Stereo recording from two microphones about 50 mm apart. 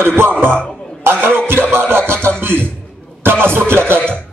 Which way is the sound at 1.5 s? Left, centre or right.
Right.